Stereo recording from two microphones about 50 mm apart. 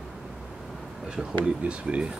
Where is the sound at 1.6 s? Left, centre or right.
Right.